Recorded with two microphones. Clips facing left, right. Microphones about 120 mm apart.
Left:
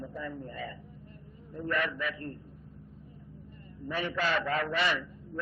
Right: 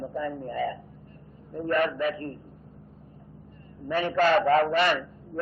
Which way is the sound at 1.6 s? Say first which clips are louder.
Right 7 dB; 45° right (ahead or behind).